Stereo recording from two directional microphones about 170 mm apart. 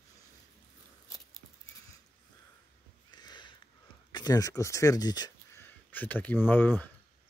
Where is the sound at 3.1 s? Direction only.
25° left (ahead or behind).